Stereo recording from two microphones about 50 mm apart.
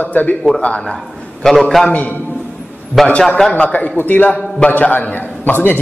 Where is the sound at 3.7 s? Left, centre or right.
Left.